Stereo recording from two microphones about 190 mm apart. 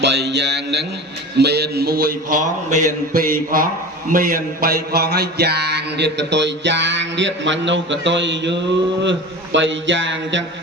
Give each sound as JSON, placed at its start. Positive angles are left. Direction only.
{"t": 0.0, "sound": "mantra", "side_deg": -65}
{"t": 2.6, "sound": "a sound", "side_deg": -40}
{"t": 4.1, "sound": "mantra", "side_deg": -50}
{"t": 9.0, "sound": "a man's voice", "side_deg": -75}